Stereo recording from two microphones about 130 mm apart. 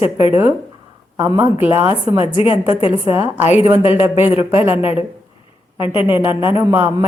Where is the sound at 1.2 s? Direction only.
15° right (ahead or behind).